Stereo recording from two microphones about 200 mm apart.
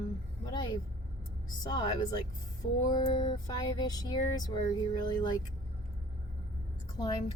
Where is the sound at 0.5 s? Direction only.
20° left (ahead or behind).